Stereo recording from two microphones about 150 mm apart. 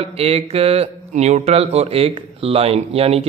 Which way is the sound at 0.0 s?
40° right (ahead or behind).